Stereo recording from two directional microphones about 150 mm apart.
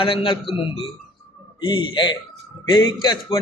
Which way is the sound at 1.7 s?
30° left (ahead or behind).